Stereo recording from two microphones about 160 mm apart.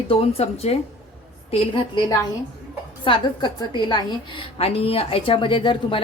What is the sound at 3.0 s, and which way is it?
A woman's voice, 30° left (ahead or behind).